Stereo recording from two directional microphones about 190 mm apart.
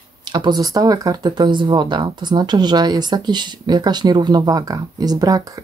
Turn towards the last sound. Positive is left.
turn(degrees=-20)  # may be behind; listen again after turning